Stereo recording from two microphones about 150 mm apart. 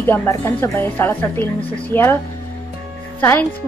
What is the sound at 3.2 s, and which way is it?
Speech, 15° left (ahead or behind).